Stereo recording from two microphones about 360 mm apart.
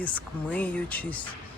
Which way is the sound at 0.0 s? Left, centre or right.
Centre.